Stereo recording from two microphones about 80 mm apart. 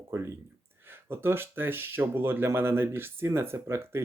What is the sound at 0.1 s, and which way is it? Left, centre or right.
Speech, right.